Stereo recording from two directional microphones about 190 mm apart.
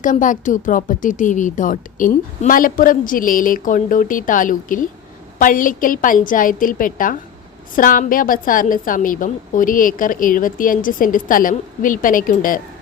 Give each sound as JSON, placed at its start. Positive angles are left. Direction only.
{"t": 0.0, "sound": "speech", "side_deg": 45}